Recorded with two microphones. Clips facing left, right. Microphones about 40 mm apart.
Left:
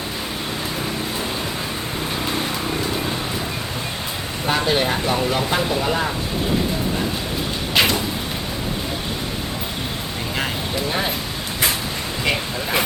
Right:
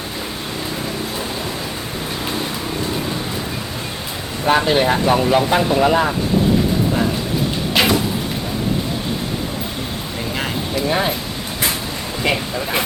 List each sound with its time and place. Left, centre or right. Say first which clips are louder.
4.4 s speech: right 5 dB; right
7.7 s a sound: right 1 dB; centre
12.2 s speech: right 3 dB; centre